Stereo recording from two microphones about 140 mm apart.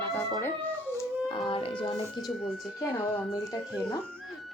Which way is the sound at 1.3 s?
40° left (ahead or behind).